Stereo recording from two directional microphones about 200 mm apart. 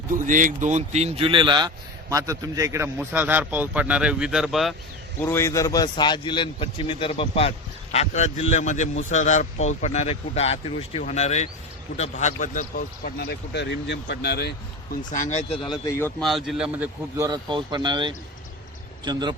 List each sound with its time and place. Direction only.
0.1 s speech: 40° right (ahead or behind); by 4.7 s centre (ahead or behind)
5.2 s a man's voice: 10° left (ahead or behind); by 14.5 s 55° left (ahead or behind)
15.1 s speech: 40° left (ahead or behind)
15.9 s speech: 10° left (ahead or behind)
16.2 s speech: centre (ahead or behind); by 19.4 s 20° right (ahead or behind)